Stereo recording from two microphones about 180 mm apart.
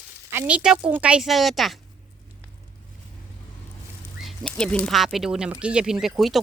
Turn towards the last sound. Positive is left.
turn(degrees=0)  # may be behind; listen again after turning